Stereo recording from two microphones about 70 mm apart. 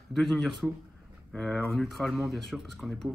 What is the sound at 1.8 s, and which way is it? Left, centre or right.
Speech, centre.